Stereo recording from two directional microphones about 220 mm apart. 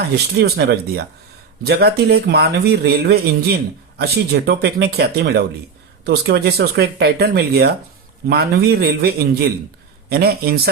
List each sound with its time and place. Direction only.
0.3 s speech: 45° right (ahead or behind)